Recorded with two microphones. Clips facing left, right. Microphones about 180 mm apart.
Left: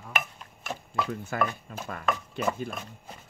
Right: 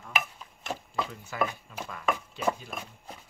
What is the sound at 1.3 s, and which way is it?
Speech, 50° left (ahead or behind).